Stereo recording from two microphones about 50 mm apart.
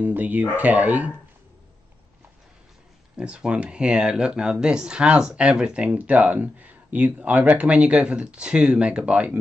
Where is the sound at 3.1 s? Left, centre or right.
Right.